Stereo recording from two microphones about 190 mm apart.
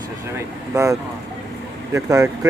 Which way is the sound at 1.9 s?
15° right (ahead or behind).